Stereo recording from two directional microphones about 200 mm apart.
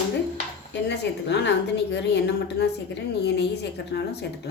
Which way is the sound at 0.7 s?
60° left (ahead or behind).